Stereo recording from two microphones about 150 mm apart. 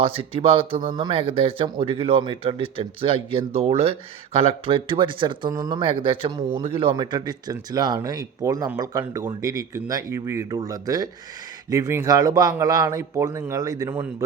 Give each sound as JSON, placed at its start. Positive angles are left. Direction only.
{"t": 0.0, "sound": "a man's voice", "side_deg": -40}